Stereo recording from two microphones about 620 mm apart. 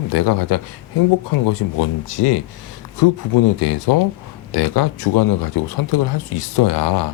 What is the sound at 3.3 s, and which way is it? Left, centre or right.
Speech, left.